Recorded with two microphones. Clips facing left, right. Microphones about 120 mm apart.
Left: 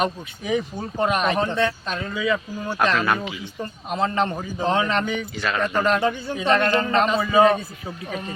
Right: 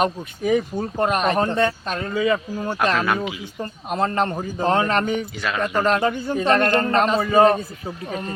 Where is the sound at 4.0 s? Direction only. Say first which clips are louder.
Right 1 dB; 45° right (ahead or behind).